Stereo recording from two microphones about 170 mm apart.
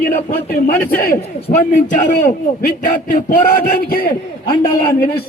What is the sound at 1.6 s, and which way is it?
A man's voice, 50° left (ahead or behind).